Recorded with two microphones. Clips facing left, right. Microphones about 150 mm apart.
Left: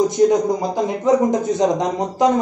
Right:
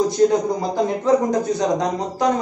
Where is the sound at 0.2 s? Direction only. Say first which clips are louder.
Left 1 dB; 15° left (ahead or behind).